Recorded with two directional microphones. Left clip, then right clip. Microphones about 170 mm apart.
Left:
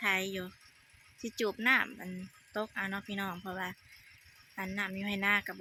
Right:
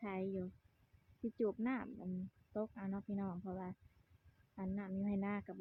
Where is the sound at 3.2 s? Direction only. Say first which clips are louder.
Left 8 dB; 25° left (ahead or behind).